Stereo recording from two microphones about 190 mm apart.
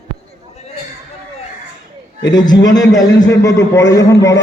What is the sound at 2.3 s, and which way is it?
A man's voice, 20° left (ahead or behind).